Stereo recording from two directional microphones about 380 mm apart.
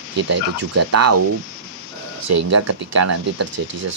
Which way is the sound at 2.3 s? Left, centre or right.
Right.